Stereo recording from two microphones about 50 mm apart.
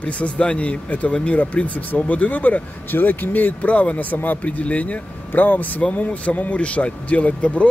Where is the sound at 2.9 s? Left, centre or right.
Left.